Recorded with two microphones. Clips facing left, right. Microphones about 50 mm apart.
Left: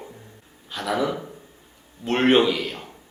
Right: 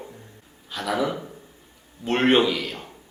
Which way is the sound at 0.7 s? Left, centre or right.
Centre.